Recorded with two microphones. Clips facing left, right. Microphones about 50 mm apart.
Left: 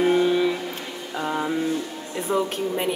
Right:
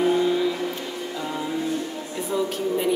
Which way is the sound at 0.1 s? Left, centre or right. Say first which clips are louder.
Left 2 dB; left.